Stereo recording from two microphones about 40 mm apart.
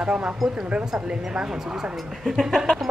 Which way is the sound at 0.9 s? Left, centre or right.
Centre.